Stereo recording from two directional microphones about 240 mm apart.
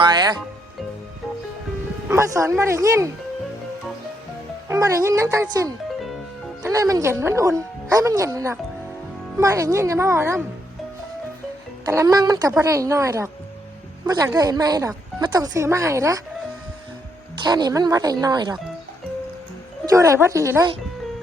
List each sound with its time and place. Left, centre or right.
0.0 s speech: centre
2.0 s speech: centre
4.7 s speech: centre
11.9 s speech: centre
17.4 s speech: centre
19.8 s speech: centre